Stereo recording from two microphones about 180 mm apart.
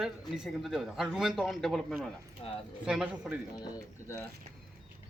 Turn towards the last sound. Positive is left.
turn(degrees=15)  # may be behind; listen again after turning